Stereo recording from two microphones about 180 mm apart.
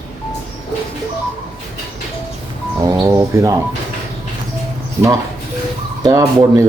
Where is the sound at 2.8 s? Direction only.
20° right (ahead or behind).